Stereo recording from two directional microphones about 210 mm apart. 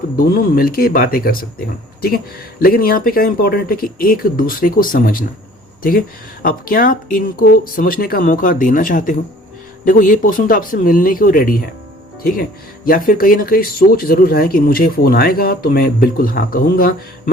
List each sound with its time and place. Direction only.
0.2 s speech: 45° left (ahead or behind)
6.4 s speech: 40° left (ahead or behind)